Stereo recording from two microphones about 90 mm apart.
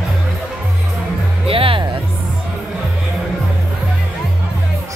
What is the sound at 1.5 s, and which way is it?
Speech, 90° right.